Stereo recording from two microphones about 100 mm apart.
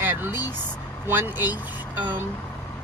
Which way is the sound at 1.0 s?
20° right (ahead or behind).